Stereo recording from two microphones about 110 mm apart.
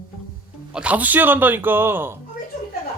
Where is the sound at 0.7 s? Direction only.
10° right (ahead or behind).